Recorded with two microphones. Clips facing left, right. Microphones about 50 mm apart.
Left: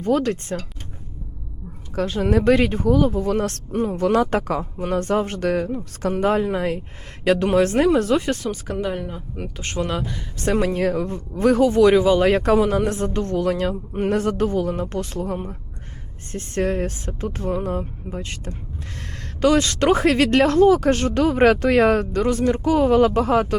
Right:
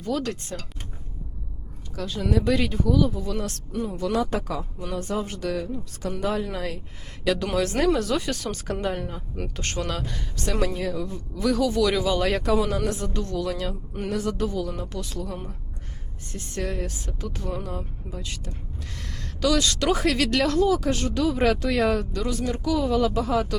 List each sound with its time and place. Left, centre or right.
0.0 s speech: left
2.0 s speech: left
8.4 s speech: centre; by 10.0 s left
10.0 s speech: centre
10.3 s speech: left
10.8 s speech: left